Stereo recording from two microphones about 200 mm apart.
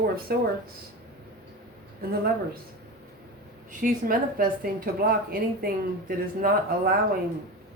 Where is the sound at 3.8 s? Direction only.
45° right (ahead or behind).